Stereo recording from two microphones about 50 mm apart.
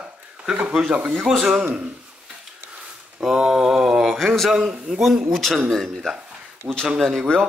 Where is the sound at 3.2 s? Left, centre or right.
Centre.